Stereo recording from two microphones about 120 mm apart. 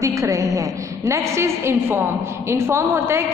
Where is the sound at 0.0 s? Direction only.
25° right (ahead or behind).